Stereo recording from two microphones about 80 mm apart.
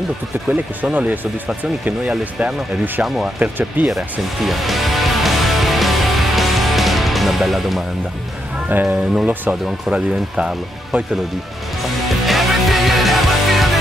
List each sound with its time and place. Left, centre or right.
0.5 s speech: centre
3.3 s speech: right
4.5 s music: centre
8.8 s speech: centre
12.3 s music: centre